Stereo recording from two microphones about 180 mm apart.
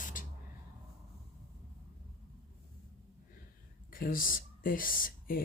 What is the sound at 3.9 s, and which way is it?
Speech, 50° left (ahead or behind).